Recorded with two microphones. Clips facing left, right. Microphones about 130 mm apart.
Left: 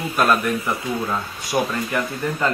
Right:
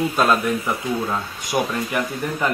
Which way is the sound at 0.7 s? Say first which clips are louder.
Right 1 dB; 10° right (ahead or behind).